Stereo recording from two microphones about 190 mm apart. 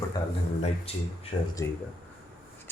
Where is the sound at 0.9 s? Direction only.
30° left (ahead or behind).